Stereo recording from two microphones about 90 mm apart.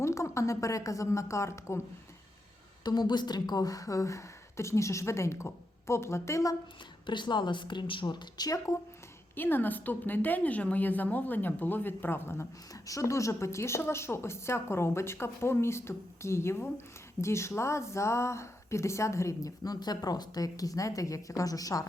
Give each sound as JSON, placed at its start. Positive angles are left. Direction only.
{"t": 0.0, "sound": "a woman's voice", "side_deg": 35}
{"t": 2.8, "sound": "a woman's voice", "side_deg": 50}
{"t": 7.1, "sound": "a woman's voice", "side_deg": 60}
{"t": 9.3, "sound": "a woman's voice", "side_deg": 20}